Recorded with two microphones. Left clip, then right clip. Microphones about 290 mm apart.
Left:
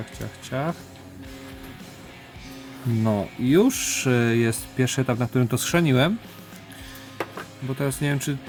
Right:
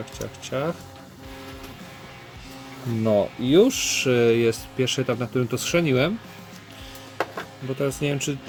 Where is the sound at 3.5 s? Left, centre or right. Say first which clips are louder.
Right 2 dB; left.